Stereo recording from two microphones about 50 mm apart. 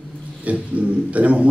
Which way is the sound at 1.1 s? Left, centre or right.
Right.